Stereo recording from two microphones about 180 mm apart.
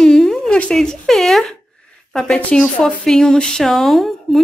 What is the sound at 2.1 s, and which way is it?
Speech, 5° left (ahead or behind).